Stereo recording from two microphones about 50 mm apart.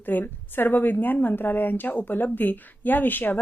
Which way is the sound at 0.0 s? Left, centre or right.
Left.